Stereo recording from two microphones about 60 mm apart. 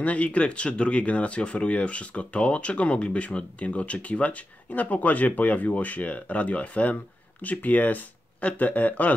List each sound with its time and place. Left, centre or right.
0.0 s speech: left